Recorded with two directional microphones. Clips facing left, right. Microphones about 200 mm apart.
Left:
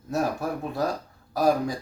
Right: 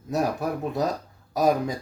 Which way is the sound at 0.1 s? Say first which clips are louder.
Right 1 dB; 20° right (ahead or behind).